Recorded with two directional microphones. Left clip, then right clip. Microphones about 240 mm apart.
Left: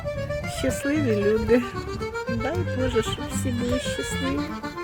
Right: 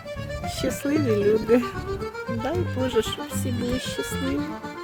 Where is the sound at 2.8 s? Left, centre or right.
Centre.